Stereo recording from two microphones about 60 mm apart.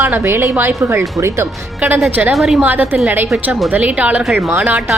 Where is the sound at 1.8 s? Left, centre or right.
Right.